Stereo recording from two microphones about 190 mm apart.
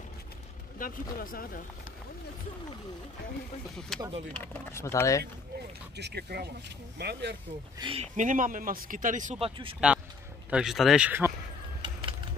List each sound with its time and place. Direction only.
0.7 s speech: 50° left (ahead or behind)
3.9 s speech: centre (ahead or behind)
4.3 s speech: 10° left (ahead or behind)
5.9 s speech: 60° right (ahead or behind)
7.8 s speech: 30° right (ahead or behind)
10.5 s speech: centre (ahead or behind)
11.8 s a sound: 25° right (ahead or behind)